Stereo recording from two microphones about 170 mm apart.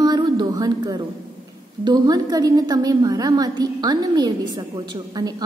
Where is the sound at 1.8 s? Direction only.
25° right (ahead or behind).